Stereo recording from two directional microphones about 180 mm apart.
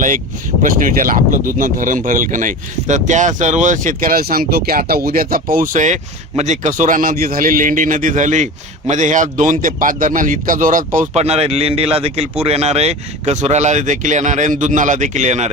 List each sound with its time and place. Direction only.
0.6 s speech: 50° right (ahead or behind)
11.1 s speech: 35° right (ahead or behind)